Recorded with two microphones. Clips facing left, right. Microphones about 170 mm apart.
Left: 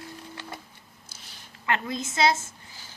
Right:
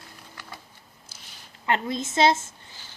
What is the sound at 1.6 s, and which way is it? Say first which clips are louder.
Speech: right 2 dB; 25° right (ahead or behind).